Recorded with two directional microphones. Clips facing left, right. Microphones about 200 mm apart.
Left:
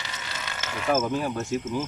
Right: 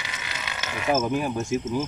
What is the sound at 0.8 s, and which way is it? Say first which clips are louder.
Speech: right 1 dB; 10° right (ahead or behind).